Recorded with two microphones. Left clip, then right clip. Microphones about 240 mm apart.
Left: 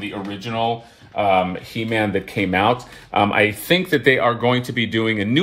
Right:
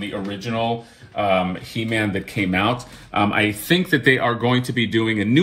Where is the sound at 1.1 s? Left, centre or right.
Left.